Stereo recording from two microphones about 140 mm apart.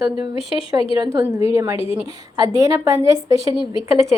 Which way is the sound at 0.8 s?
40° left (ahead or behind).